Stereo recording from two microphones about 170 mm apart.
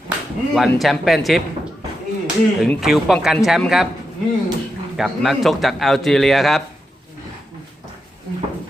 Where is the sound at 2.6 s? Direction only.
Centre (ahead or behind).